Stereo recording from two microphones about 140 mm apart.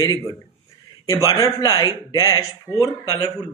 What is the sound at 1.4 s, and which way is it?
A man's voice, 25° left (ahead or behind).